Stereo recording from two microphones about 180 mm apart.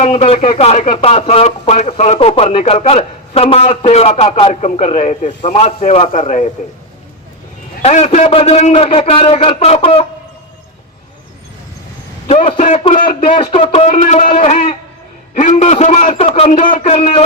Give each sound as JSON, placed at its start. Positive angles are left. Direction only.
{"t": 0.0, "sound": "speech", "side_deg": 35}
{"t": 7.8, "sound": "speech", "side_deg": 35}
{"t": 12.3, "sound": "speech", "side_deg": 35}